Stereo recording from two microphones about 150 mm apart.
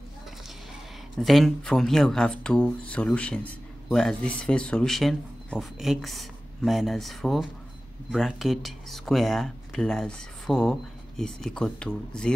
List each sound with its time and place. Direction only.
1.2 s speech: centre (ahead or behind)